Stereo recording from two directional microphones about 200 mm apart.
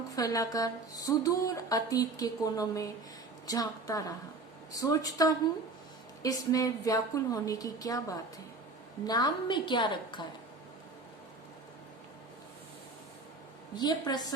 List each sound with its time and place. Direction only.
0.2 s a woman's voice: 20° left (ahead or behind)
13.7 s a woman's voice: 20° left (ahead or behind)